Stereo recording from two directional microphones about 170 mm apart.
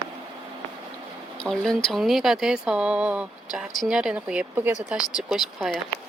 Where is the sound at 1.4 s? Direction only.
5° left (ahead or behind).